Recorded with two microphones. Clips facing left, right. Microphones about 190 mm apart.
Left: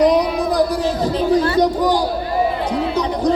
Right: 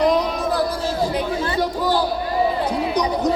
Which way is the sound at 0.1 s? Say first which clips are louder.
Left 3 dB; 15° left (ahead or behind).